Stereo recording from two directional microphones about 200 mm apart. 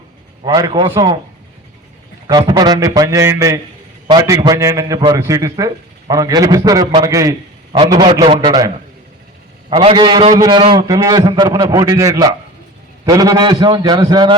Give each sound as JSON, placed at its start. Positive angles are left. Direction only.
{"t": 0.4, "sound": "a man's voice", "side_deg": -20}
{"t": 2.2, "sound": "a man's voice", "side_deg": -20}